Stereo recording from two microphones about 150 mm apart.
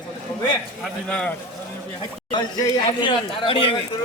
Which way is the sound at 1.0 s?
5° left (ahead or behind).